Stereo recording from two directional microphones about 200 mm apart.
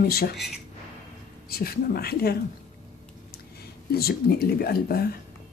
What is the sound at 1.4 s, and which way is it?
Speech, 50° left (ahead or behind).